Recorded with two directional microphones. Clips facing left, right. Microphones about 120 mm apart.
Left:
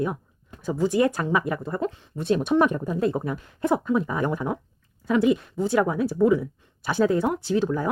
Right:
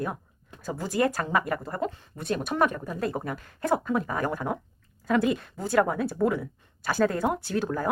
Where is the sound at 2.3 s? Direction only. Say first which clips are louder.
Left 5 dB; 25° left (ahead or behind).